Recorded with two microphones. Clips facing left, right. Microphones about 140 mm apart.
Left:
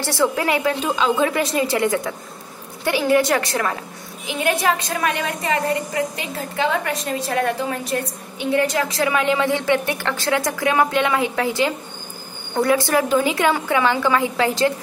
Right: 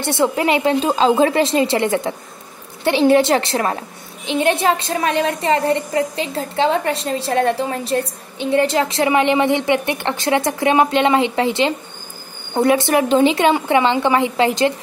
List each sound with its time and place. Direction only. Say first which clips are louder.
0.0 s a woman's voice: right 3 dB; 20° right (ahead or behind)